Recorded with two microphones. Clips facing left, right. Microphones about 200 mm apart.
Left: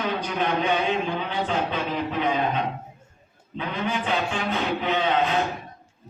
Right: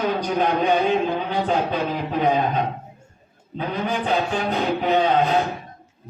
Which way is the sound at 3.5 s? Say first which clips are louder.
Right 3 dB; 40° right (ahead or behind).